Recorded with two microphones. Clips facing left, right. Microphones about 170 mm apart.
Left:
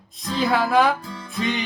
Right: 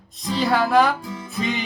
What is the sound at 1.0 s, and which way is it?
Music, 15° right (ahead or behind).